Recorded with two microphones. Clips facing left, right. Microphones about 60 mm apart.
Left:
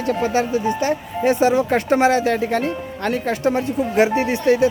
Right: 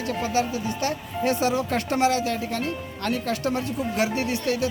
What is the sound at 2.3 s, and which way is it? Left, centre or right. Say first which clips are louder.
Speech: left 8 dB; left.